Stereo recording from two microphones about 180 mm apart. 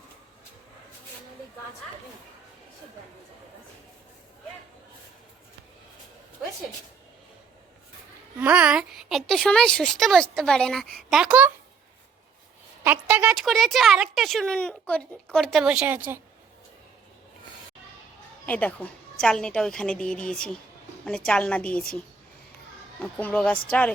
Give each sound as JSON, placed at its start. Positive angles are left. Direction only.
{"t": 8.4, "sound": "speech", "side_deg": -10}
{"t": 12.8, "sound": "speech", "side_deg": -10}
{"t": 18.4, "sound": "a woman's voice", "side_deg": 10}